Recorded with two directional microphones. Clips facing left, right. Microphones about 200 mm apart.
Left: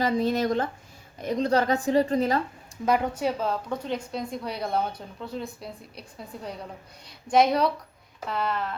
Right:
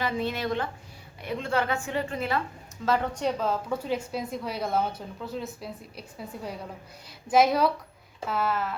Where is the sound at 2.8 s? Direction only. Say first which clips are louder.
Left 2 dB; 15° left (ahead or behind).